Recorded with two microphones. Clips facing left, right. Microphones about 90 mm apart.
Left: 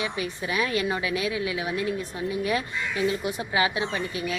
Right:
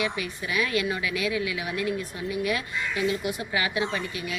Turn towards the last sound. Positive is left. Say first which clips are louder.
# left 2 dB
turn(degrees=25)  # may be behind; listen again after turning